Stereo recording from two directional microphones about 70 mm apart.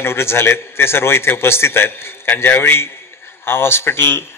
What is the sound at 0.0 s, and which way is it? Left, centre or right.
Speech, left.